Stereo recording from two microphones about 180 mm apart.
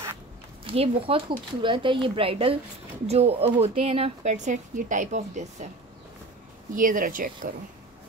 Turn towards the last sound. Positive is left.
turn(degrees=-50)  # may be behind; listen again after turning